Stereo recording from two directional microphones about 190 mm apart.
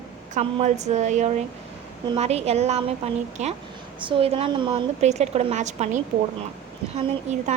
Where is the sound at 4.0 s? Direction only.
25° right (ahead or behind).